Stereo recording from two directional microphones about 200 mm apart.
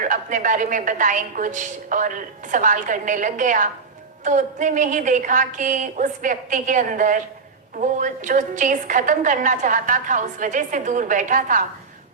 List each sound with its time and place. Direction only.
0.0 s a woman's voice: 40° right (ahead or behind)